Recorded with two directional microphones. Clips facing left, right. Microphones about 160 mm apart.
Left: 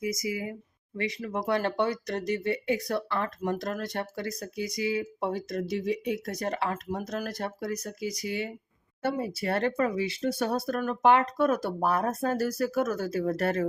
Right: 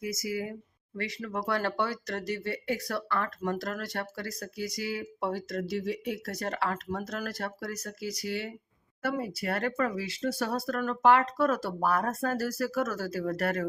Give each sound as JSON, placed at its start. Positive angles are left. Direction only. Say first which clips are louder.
{"t": 0.0, "sound": "speech", "louder": "left 2 dB", "side_deg": 15}